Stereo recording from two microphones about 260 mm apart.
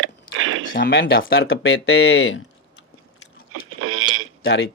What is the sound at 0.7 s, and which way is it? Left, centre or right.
Speech, left.